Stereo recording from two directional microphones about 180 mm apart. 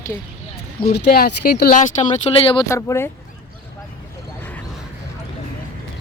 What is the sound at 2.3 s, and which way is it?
Speech, 30° left (ahead or behind).